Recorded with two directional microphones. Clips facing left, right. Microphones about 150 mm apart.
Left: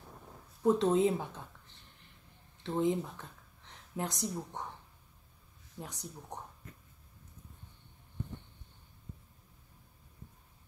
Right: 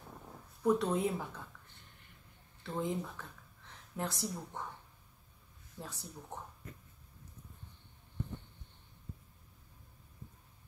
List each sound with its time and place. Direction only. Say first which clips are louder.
0.6 s speech: left 4 dB; 25° left (ahead or behind)
2.6 s speech: left 6 dB; 20° left (ahead or behind)
5.8 s speech: left 2 dB; 15° left (ahead or behind)